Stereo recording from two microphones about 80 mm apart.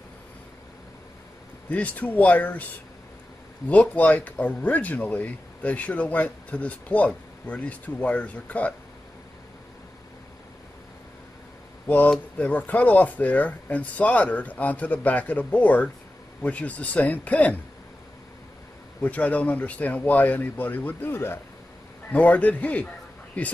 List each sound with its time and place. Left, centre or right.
1.7 s speech: centre
3.9 s speech: centre
12.1 s speech: centre
18.9 s speech: centre
22.1 s speech: centre